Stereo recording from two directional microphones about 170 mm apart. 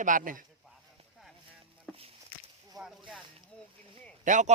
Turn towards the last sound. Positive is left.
turn(degrees=-45)  # may be behind; listen again after turning